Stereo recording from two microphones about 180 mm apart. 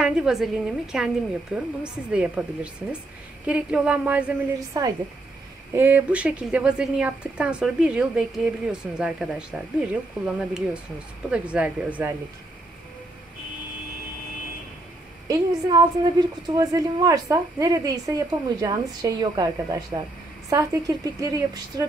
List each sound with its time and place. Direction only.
0.0 s speech: 5° right (ahead or behind)
4.6 s a woman's voice: 20° right (ahead or behind)
15.2 s a woman's voice: 20° right (ahead or behind)